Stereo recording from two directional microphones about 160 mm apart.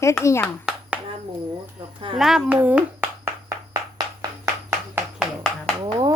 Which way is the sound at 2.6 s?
10° right (ahead or behind).